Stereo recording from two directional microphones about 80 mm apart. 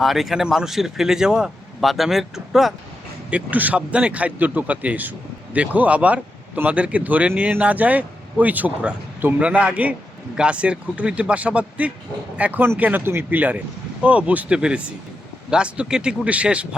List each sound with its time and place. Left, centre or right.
0.0 s speech: centre
3.2 s a man's voice: centre